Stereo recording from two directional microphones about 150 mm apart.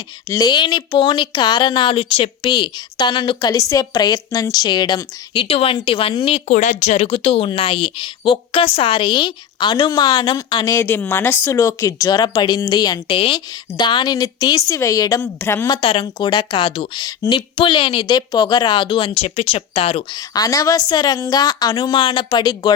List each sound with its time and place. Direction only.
0.3 s speech: 25° left (ahead or behind)
6.5 s a woman's voice: 55° left (ahead or behind); by 15.7 s 15° left (ahead or behind)
15.7 s speech: 35° left (ahead or behind)
20.1 s a woman's voice: 25° left (ahead or behind)